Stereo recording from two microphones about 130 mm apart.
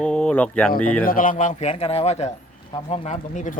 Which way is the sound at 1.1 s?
90° left.